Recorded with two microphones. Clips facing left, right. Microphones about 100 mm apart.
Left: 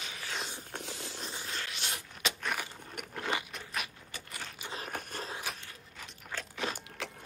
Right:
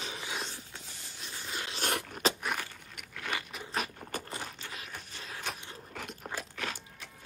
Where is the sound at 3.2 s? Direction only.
25° left (ahead or behind).